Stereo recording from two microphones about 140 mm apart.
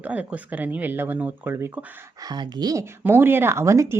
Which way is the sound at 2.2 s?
30° right (ahead or behind).